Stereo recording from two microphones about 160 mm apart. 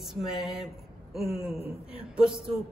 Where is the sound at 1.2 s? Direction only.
40° left (ahead or behind).